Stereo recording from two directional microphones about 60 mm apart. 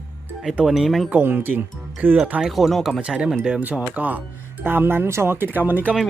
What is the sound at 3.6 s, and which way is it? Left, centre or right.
Speech, right.